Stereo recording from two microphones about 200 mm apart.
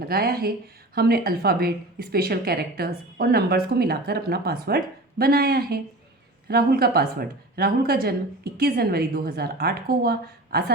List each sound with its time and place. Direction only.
0.0 s speech: 50° right (ahead or behind)